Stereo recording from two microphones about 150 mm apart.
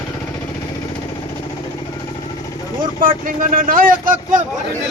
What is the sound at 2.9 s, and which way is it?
Vehicle, 70° right (ahead or behind).